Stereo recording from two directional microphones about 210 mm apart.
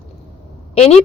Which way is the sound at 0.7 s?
30° left (ahead or behind).